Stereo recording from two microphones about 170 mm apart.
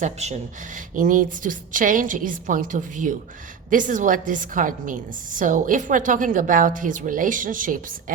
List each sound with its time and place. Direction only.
0.0 s speech: 40° right (ahead or behind)
0.9 s a woman's voice: 50° right (ahead or behind)